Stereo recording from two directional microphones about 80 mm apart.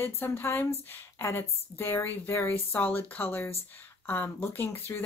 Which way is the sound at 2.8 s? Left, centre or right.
Left.